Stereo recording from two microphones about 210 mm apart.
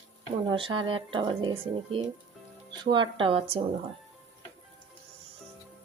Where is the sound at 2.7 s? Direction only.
20° right (ahead or behind).